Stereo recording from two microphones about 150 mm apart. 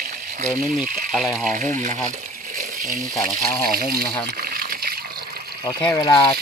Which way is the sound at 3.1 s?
20° left (ahead or behind).